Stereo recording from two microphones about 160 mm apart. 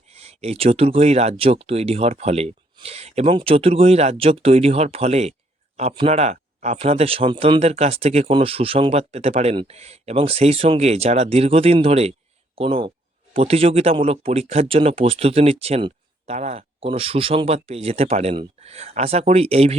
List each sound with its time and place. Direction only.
0.1 s speech: 40° right (ahead or behind)